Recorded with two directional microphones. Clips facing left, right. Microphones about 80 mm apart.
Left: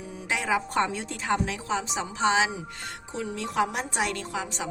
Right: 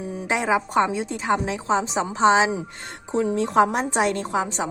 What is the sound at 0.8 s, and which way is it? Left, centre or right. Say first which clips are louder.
A woman's voice: right 6 dB; centre.